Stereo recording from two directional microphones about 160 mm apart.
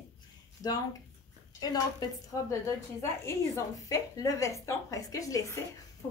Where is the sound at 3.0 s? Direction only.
20° left (ahead or behind).